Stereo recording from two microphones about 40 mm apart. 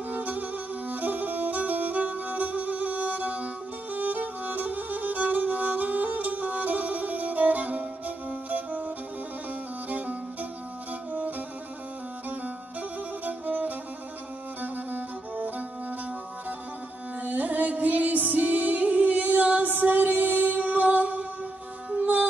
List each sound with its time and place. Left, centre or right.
0.1 s music: right
13.2 s music: right
17.2 s music: right